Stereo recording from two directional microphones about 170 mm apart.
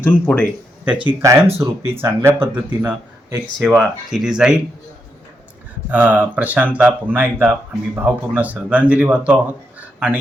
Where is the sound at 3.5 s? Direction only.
5° left (ahead or behind).